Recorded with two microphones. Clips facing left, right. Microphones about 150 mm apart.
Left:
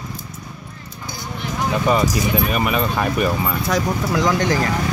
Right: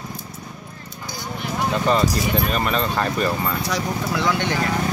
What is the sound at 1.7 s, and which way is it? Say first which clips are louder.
Speech: left 2 dB; 10° left (ahead or behind).